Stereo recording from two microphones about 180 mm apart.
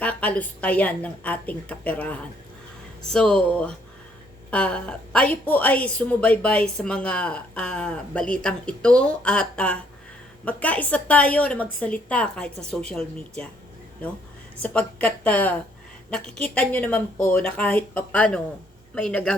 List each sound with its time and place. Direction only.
0.0 s a woman's voice: 5° left (ahead or behind)
14.6 s a woman's voice: 5° left (ahead or behind)